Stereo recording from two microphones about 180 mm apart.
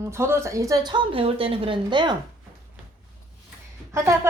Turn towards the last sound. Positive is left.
turn(degrees=-15)  # may be behind; listen again after turning